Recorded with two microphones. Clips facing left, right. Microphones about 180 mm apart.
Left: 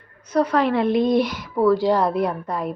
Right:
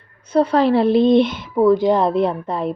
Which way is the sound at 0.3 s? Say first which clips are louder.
Right 4 dB; 30° right (ahead or behind).